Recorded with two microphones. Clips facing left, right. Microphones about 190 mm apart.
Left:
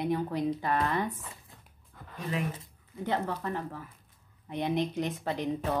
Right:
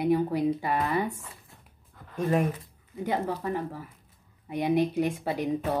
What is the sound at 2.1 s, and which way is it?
Speech, 50° right (ahead or behind).